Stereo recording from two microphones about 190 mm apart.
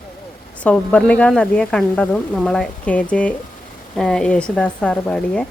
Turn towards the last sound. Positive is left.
turn(degrees=5)  # may be behind; listen again after turning